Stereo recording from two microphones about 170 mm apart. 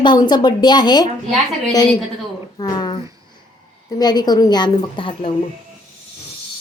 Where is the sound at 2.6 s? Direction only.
25° left (ahead or behind).